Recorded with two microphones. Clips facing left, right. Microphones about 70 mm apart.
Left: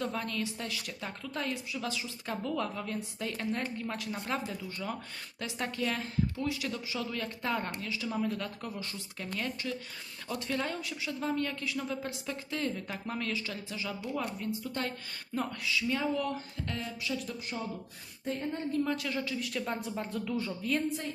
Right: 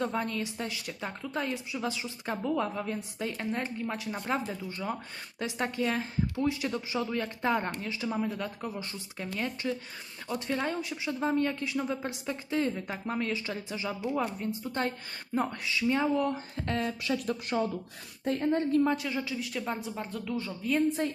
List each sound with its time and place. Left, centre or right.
0.0 s a woman's voice: centre
17.0 s speech: right
18.3 s a woman's voice: right
18.9 s speech: centre